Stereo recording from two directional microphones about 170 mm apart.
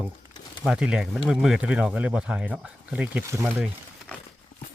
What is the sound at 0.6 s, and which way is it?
Speech, 5° right (ahead or behind).